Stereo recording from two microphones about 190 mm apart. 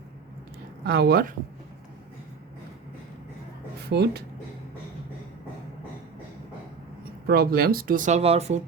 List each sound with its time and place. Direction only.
0.9 s speech: 55° right (ahead or behind)
3.8 s speech: 60° right (ahead or behind)
7.3 s speech: 55° right (ahead or behind); by 8.5 s 35° right (ahead or behind)